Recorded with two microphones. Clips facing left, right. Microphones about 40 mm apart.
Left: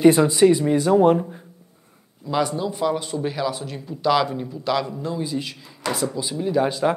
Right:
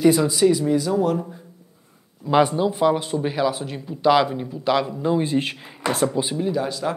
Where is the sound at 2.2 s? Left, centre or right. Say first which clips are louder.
Right 5 dB; right.